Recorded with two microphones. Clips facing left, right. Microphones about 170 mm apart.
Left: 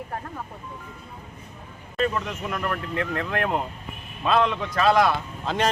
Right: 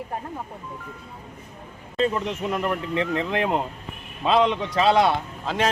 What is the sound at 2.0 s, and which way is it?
A man's voice, 25° right (ahead or behind).